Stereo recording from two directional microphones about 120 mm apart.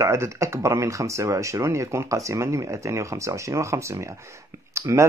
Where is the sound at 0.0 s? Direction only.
25° right (ahead or behind).